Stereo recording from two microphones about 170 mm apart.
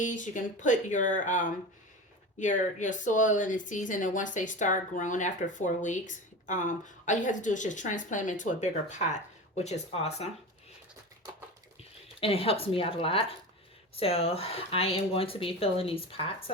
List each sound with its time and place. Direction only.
0.0 s speech: 50° left (ahead or behind)
12.2 s speech: 35° left (ahead or behind)